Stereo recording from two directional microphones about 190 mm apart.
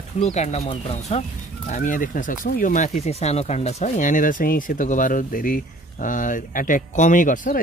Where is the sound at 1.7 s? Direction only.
45° left (ahead or behind).